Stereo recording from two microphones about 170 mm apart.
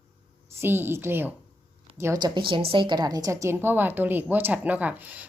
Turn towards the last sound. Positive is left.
turn(degrees=-10)  # may be behind; listen again after turning